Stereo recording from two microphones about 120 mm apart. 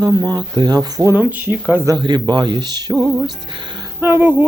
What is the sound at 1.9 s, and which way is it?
Speech, 40° right (ahead or behind).